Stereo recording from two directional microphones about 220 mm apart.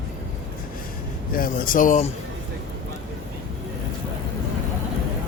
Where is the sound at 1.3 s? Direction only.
40° left (ahead or behind).